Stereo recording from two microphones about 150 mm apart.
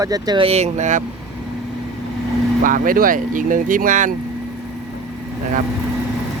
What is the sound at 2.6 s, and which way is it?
Speech, 65° right (ahead or behind).